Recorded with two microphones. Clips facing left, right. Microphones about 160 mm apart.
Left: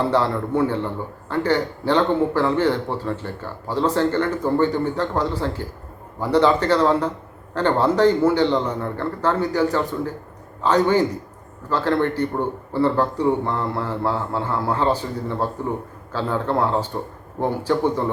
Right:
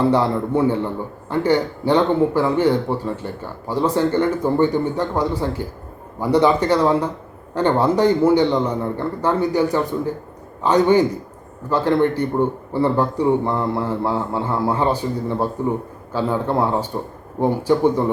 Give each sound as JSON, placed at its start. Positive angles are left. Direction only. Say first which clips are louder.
{"t": 0.1, "sound": "speech", "louder": "right 2 dB", "side_deg": -15}